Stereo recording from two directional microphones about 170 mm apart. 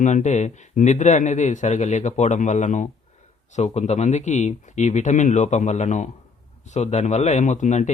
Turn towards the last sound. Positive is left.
turn(degrees=45)  # may be behind; listen again after turning